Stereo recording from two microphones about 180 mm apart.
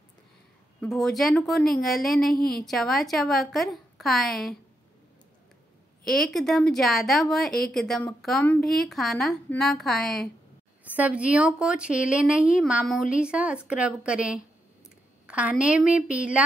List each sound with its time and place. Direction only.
0.7 s a woman's voice: 5° left (ahead or behind)
2.3 s a woman's voice: 55° left (ahead or behind)
2.6 s a woman's voice: centre (ahead or behind)
6.0 s a woman's voice: centre (ahead or behind)